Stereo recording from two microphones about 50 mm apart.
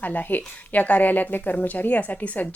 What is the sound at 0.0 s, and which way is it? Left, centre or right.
Speech, left.